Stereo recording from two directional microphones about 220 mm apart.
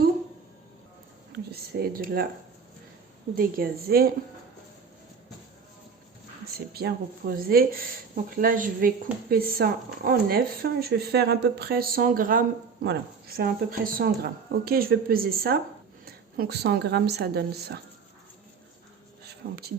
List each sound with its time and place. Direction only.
1.5 s speech: 45° right (ahead or behind)
3.3 s speech: 40° right (ahead or behind)
6.7 s a woman's voice: 45° right (ahead or behind)
19.4 s speech: 45° right (ahead or behind)